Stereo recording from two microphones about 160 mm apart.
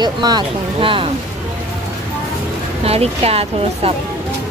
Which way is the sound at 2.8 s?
40° right (ahead or behind).